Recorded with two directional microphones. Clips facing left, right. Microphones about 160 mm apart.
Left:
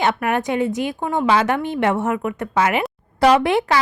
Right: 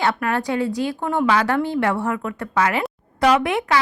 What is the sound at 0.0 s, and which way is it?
Speech, 20° left (ahead or behind).